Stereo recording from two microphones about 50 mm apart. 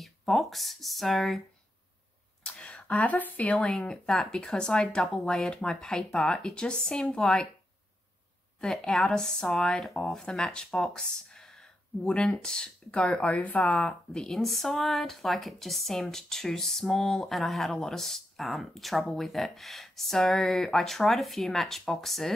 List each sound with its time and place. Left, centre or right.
0.0 s speech: centre
2.4 s a sound: left
3.6 s speech: centre
5.0 s speech: left
5.3 s speech: centre
8.5 s speech: centre
13.0 s speech: left
13.8 s speech: centre